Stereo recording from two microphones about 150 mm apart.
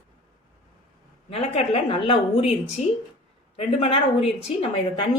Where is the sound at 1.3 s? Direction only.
45° left (ahead or behind).